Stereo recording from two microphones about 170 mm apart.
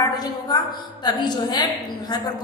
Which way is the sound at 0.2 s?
25° left (ahead or behind).